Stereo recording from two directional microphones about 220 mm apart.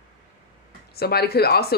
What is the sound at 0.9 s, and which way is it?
Speech, 45° left (ahead or behind).